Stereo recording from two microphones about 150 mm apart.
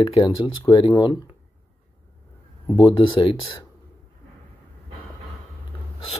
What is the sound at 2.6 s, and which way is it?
Speech, 30° left (ahead or behind).